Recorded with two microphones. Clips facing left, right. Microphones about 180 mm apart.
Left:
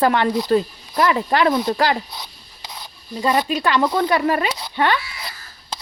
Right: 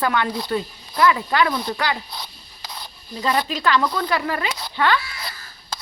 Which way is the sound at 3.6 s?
25° left (ahead or behind).